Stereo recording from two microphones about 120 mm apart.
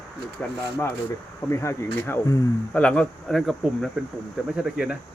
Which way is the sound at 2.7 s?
10° left (ahead or behind).